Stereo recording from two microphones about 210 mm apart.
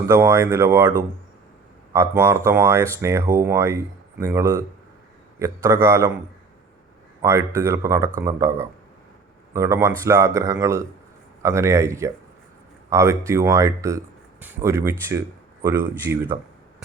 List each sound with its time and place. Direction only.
0.1 s speech: 10° right (ahead or behind)
7.2 s speech: 15° right (ahead or behind)